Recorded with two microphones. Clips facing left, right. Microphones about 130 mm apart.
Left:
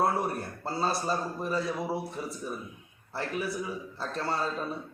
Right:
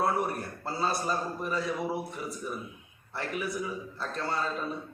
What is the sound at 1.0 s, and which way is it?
A man's voice, 30° left (ahead or behind).